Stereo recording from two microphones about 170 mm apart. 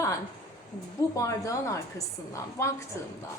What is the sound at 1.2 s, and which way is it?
A woman's voice, 20° left (ahead or behind).